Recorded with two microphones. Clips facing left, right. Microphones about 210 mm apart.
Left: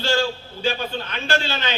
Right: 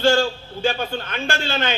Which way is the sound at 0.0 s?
50° right (ahead or behind).